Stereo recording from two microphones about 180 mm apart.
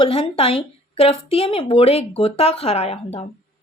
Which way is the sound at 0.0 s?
30° left (ahead or behind).